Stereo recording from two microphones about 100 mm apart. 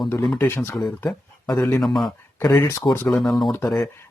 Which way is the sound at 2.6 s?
25° left (ahead or behind).